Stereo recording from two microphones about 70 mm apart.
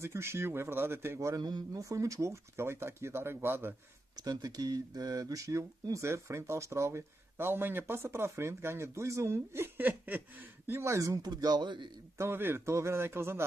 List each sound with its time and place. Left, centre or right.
0.0 s speech: right
1.3 s speech: right
1.7 s speech: right
4.2 s speech: right
9.8 s a sound: right
10.7 s speech: right
12.2 s speech: right